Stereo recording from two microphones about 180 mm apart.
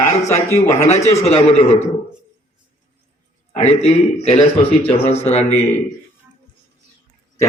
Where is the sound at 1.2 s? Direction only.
35° left (ahead or behind).